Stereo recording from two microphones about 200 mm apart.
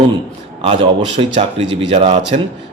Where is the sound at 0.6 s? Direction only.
30° right (ahead or behind).